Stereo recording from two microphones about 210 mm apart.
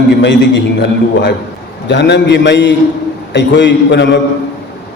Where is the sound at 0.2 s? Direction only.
55° left (ahead or behind).